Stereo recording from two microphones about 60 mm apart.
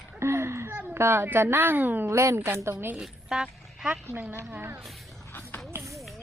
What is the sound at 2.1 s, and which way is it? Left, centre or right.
Speech, right.